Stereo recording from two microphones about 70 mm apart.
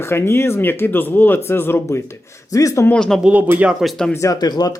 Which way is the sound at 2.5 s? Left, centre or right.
Left.